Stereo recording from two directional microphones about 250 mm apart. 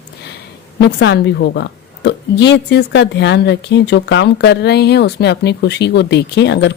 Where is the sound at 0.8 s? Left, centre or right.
Left.